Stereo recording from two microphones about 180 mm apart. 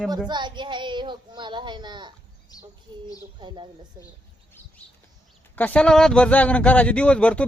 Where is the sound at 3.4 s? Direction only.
25° right (ahead or behind).